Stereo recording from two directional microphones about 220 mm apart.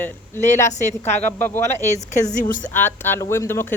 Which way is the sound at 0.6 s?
30° left (ahead or behind).